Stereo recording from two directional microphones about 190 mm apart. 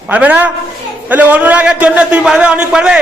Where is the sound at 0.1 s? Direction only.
10° right (ahead or behind).